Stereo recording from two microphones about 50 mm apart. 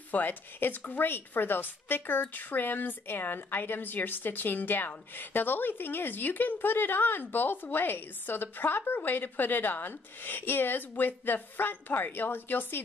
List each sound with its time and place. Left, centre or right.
0.1 s a woman's voice: left